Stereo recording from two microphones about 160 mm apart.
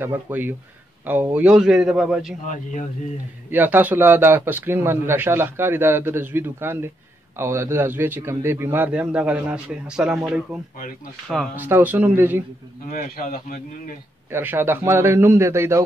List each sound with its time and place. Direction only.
0.0 s a man's voice: 15° right (ahead or behind)
2.4 s speech: 50° left (ahead or behind)
3.5 s speech: 10° right (ahead or behind)
12.9 s speech: 65° left (ahead or behind)
14.3 s speech: 15° right (ahead or behind)